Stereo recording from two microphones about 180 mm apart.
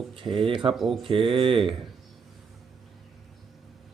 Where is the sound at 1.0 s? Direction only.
30° right (ahead or behind).